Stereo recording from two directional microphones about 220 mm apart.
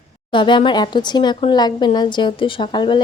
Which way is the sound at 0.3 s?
20° left (ahead or behind).